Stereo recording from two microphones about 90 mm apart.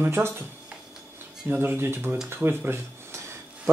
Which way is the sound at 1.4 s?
25° right (ahead or behind).